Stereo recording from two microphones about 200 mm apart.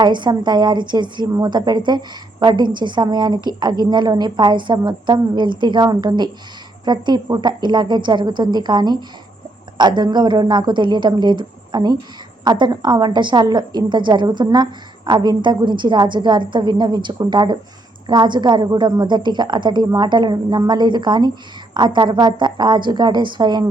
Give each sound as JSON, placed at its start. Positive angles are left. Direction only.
{"t": 0.0, "sound": "a woman's voice", "side_deg": -20}